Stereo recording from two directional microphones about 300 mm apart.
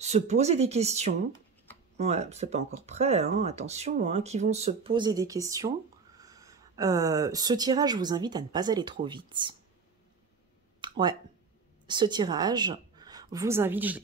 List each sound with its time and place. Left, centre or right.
0.0 s speech: right
10.8 s a sound: centre
11.9 s a woman's voice: centre